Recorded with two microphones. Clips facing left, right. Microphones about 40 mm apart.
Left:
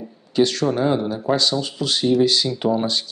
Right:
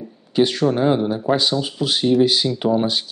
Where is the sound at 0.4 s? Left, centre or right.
Centre.